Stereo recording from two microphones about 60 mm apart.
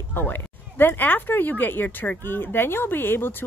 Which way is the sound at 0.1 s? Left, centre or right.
Left.